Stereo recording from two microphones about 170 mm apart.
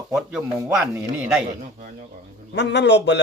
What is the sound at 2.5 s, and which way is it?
Speech, 85° left.